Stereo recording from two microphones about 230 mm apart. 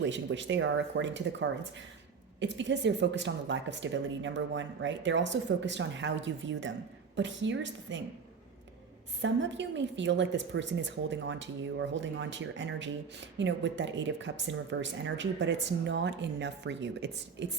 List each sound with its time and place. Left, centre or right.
0.0 s speech: right
9.2 s speech: right